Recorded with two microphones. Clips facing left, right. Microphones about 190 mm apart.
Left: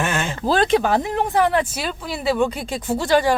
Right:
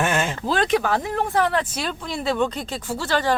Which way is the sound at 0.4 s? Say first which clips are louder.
Left 5 dB; 35° left (ahead or behind).